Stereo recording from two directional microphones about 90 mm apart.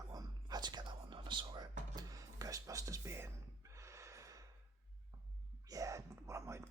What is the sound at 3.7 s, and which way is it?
Snort, 35° right (ahead or behind).